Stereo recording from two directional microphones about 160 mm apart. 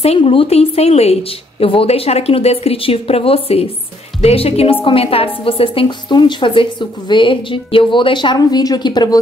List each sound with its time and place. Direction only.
0.0 s a woman's voice: 35° left (ahead or behind)